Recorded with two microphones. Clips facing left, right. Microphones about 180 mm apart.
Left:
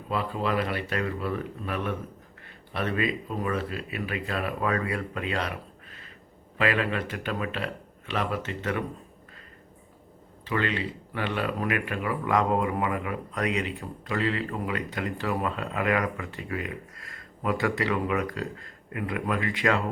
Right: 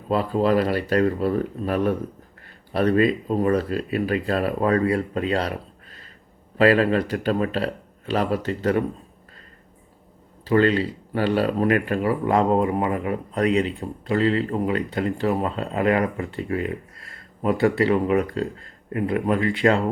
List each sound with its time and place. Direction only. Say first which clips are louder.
0.1 s speech: right 8 dB; 35° right (ahead or behind)
10.4 s speech: right 10 dB; 35° right (ahead or behind)